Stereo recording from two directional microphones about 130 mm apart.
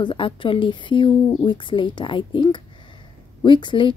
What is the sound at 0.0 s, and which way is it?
Speech, 40° left (ahead or behind).